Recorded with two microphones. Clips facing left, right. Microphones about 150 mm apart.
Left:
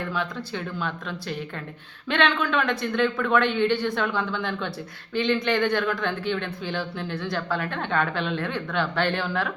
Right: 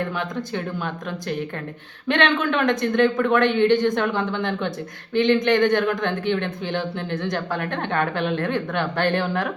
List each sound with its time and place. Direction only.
0.1 s speech: 55° right (ahead or behind)
3.7 s speech: 20° right (ahead or behind)
4.4 s speech: 55° right (ahead or behind)